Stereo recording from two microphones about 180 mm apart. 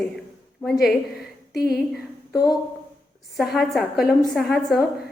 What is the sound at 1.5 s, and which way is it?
Speech, 60° left (ahead or behind).